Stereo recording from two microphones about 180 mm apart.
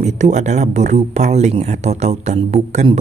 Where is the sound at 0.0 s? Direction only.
40° right (ahead or behind).